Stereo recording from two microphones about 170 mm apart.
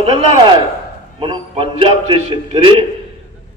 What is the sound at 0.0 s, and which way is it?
Speech, 35° right (ahead or behind).